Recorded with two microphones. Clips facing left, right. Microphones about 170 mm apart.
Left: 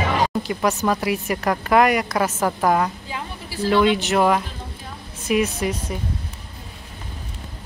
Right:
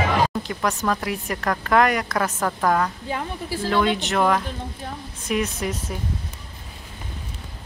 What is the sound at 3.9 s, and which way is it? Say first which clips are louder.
Speech: left 2 dB; 5° left (ahead or behind).